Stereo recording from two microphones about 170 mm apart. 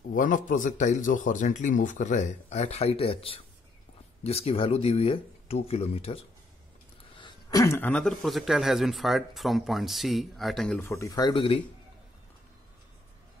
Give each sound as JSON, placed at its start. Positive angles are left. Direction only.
{"t": 0.1, "sound": "speech", "side_deg": 50}
{"t": 7.2, "sound": "a sound", "side_deg": 25}
{"t": 7.6, "sound": "speech", "side_deg": 10}
{"t": 10.8, "sound": "speech", "side_deg": 15}